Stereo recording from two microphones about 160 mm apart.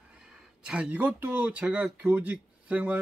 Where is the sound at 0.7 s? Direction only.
10° right (ahead or behind).